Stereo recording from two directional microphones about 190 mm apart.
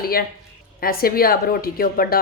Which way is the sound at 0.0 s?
50° left (ahead or behind).